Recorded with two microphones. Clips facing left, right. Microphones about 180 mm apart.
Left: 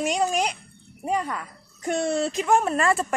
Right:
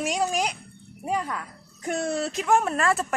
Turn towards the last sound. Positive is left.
turn(degrees=0)  # may be behind; listen again after turning